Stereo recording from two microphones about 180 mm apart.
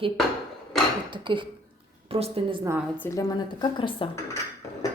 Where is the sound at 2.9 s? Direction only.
15° left (ahead or behind).